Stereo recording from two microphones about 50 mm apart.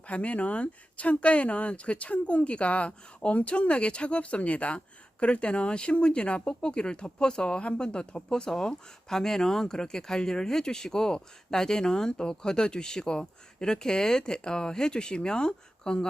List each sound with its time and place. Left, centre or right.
0.1 s speech: left